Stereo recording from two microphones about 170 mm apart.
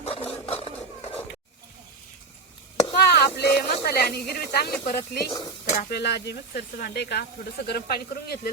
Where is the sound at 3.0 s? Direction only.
75° left (ahead or behind).